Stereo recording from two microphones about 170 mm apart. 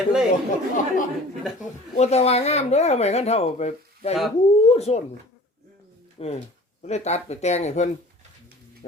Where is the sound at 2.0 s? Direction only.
40° left (ahead or behind).